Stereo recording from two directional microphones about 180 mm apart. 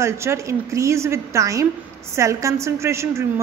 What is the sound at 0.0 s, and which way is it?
A woman's voice, 15° right (ahead or behind).